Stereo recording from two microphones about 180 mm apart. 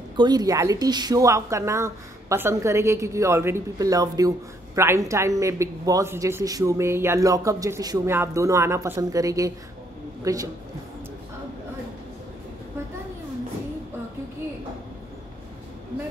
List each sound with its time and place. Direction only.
0.1 s a woman's voice: 25° right (ahead or behind)